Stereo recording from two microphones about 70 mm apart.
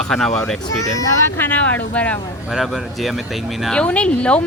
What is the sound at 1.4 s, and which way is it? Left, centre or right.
Speech, left.